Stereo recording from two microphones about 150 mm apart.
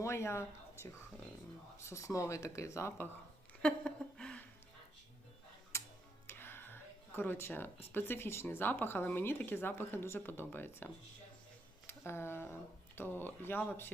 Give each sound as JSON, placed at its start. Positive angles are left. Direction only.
{"t": 0.0, "sound": "speech", "side_deg": 20}
{"t": 3.6, "sound": "speech", "side_deg": 5}
{"t": 5.7, "sound": "music", "side_deg": 20}
{"t": 6.2, "sound": "speech", "side_deg": 15}